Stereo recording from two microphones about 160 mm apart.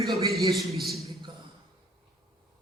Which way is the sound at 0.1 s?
Centre (ahead or behind).